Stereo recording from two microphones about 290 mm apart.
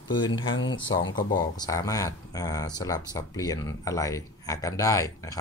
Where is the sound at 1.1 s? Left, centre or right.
Centre.